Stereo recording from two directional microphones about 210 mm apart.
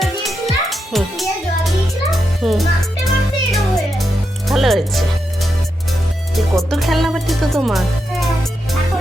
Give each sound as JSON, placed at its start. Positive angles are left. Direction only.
{"t": 0.0, "sound": "music", "side_deg": 0}